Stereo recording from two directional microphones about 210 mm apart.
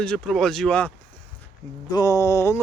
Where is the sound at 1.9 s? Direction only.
15° left (ahead or behind).